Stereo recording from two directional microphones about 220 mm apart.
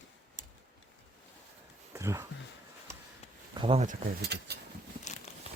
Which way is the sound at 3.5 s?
25° right (ahead or behind).